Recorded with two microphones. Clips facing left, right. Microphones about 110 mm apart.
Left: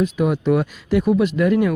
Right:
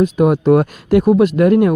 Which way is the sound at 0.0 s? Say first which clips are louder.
Right 6 dB; 45° right (ahead or behind).